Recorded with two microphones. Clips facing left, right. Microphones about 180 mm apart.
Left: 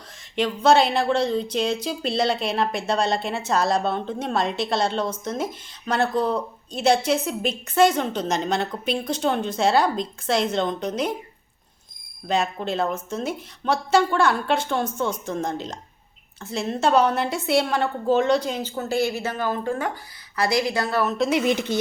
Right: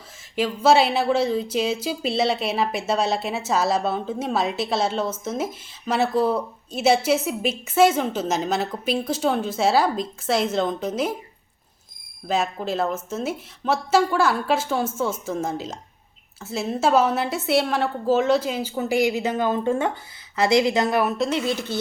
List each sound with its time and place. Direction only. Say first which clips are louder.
0.3 s a woman's voice: even; 5° right (ahead or behind)
12.3 s a woman's voice: even; 5° right (ahead or behind)
21.2 s a woman's voice: left 3 dB; 15° left (ahead or behind)